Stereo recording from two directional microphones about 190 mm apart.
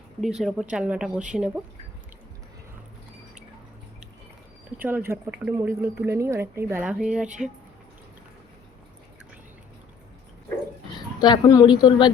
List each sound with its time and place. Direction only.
0.2 s speech: centre (ahead or behind)
4.8 s speech: 10° right (ahead or behind)
11.2 s speech: 20° left (ahead or behind)